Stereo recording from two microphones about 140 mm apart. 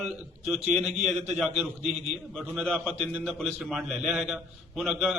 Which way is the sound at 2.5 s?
5° left (ahead or behind).